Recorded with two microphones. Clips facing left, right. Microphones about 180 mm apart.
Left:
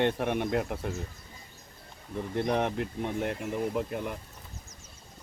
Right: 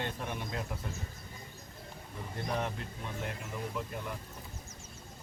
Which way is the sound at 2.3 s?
60° left (ahead or behind).